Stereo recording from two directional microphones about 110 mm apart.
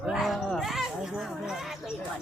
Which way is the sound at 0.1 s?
Centre (ahead or behind).